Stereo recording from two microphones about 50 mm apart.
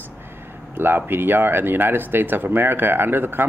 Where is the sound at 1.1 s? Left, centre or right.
Right.